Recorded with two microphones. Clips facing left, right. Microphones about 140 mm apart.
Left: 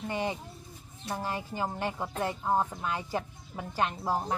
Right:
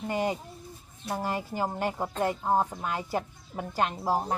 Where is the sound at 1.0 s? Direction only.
15° right (ahead or behind).